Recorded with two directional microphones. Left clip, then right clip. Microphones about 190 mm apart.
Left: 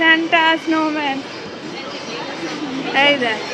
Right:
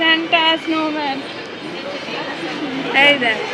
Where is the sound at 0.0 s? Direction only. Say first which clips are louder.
Left 1 dB; 10° left (ahead or behind).